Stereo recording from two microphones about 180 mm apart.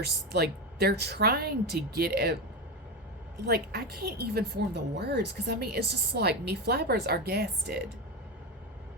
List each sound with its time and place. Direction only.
0.0 s a woman's voice: 60° right (ahead or behind)
3.4 s a woman's voice: 60° right (ahead or behind)